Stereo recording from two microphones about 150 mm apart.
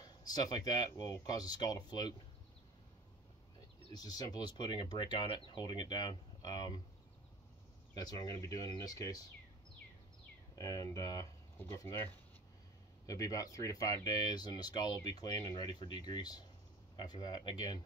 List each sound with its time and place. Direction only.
0.0 s speech: 25° left (ahead or behind)
3.9 s speech: 25° left (ahead or behind)
7.9 s speech: 25° left (ahead or behind)
10.5 s speech: 25° left (ahead or behind)
13.0 s speech: 20° left (ahead or behind)